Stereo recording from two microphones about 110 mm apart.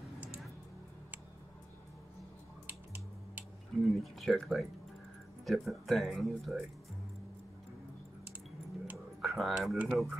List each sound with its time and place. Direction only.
2.6 s music: 15° right (ahead or behind)
3.8 s speech: centre (ahead or behind)
9.2 s speech: centre (ahead or behind)